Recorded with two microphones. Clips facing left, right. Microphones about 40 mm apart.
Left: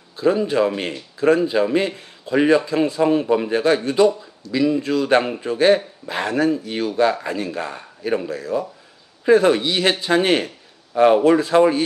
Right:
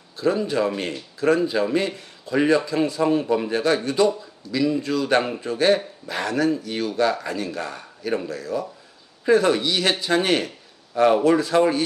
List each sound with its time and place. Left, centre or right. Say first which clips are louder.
0.2 s a man's voice: left 4 dB; centre